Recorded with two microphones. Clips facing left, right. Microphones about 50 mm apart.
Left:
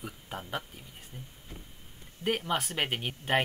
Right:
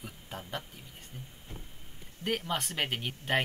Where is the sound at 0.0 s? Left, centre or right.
Centre.